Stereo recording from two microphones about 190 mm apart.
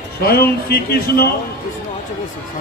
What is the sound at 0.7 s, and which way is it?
Speech, 55° left (ahead or behind).